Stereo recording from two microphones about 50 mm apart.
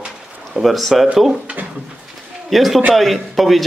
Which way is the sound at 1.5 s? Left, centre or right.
Right.